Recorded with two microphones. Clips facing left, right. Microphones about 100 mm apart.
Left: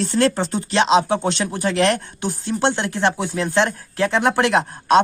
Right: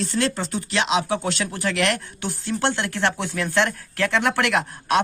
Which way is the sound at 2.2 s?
20° left (ahead or behind).